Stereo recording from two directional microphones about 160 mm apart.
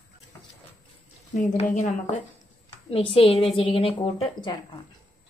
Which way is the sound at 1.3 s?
50° left (ahead or behind).